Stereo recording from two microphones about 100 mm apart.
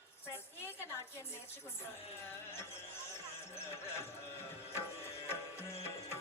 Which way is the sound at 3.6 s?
25° left (ahead or behind).